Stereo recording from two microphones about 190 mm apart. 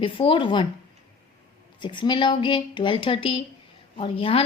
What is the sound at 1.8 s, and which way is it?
Speech, 25° left (ahead or behind).